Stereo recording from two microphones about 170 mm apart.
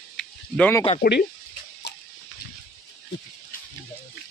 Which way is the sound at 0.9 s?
80° left.